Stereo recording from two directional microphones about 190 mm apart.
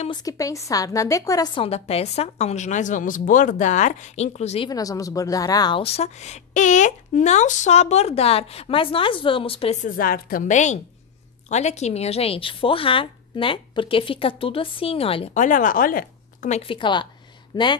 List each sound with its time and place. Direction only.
0.0 s speech: 20° left (ahead or behind)
4.6 s speech: 20° left (ahead or behind)